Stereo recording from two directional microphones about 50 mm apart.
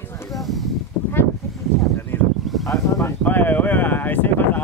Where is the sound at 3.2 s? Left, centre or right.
Left.